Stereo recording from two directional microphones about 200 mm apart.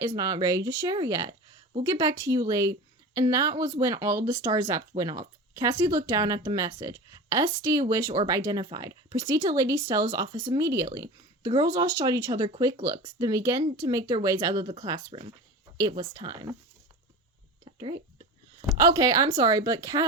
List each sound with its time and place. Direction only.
0.2 s a woman's voice: 20° right (ahead or behind)
18.8 s a woman's voice: 15° right (ahead or behind)